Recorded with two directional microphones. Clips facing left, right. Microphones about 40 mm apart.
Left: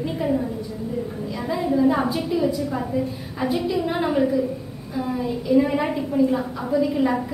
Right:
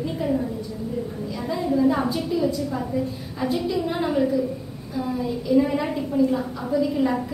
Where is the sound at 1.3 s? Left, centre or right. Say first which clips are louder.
Left 1 dB; left.